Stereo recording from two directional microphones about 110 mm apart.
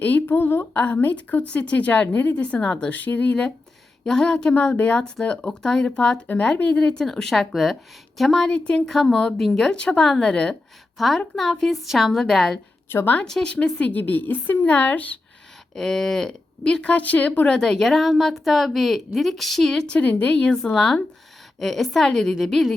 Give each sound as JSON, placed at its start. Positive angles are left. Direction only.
{"t": 0.0, "sound": "speech", "side_deg": 15}
{"t": 12.9, "sound": "a woman's voice", "side_deg": 20}
{"t": 13.2, "sound": "speech", "side_deg": 5}
{"t": 15.7, "sound": "speech", "side_deg": 5}